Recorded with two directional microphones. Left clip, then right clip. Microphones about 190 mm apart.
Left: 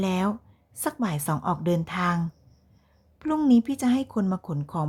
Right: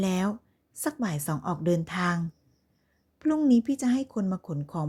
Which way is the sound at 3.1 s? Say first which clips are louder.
Even; 5° right (ahead or behind).